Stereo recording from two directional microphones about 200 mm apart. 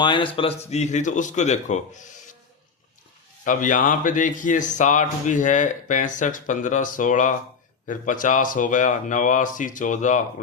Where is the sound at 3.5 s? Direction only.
40° left (ahead or behind).